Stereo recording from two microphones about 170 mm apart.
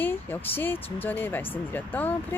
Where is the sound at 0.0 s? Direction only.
10° left (ahead or behind).